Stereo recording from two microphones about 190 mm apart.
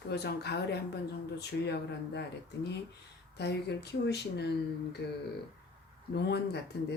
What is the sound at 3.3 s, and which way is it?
Speech, 60° left (ahead or behind).